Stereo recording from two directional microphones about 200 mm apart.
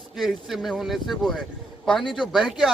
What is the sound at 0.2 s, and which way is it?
A man's voice, centre (ahead or behind).